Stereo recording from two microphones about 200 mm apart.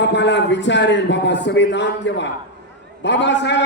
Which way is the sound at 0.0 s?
60° left (ahead or behind).